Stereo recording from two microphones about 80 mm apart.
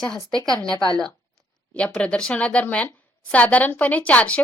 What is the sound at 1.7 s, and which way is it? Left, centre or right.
Speech, centre.